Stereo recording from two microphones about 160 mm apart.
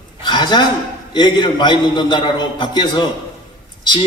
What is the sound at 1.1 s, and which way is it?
A man's voice, 30° left (ahead or behind).